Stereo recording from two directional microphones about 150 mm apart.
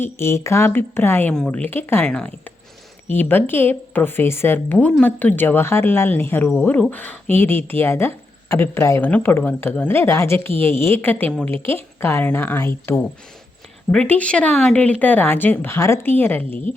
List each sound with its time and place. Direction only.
0.0 s speech: 15° left (ahead or behind)